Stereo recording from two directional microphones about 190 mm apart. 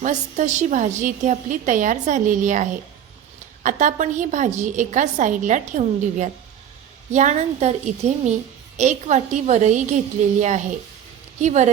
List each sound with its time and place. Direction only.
0.0 s a woman's voice: 40° right (ahead or behind)
11.3 s a woman's voice: 40° right (ahead or behind)